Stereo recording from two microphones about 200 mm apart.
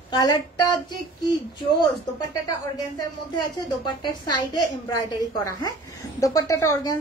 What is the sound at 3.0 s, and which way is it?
A woman's voice, 20° left (ahead or behind).